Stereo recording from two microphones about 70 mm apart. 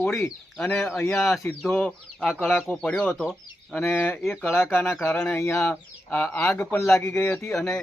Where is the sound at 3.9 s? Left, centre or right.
Left.